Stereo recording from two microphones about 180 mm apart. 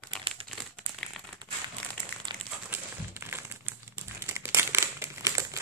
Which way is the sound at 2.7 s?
15° right (ahead or behind).